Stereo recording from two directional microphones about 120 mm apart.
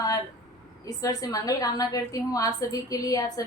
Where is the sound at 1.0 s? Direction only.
30° left (ahead or behind).